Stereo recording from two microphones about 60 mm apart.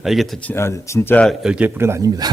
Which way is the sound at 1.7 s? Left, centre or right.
Right.